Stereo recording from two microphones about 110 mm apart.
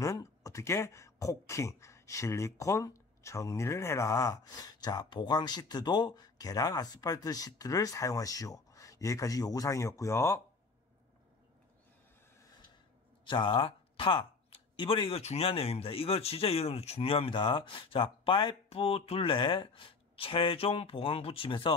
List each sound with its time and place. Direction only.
0.0 s speech: 30° left (ahead or behind)
13.2 s speech: 45° left (ahead or behind)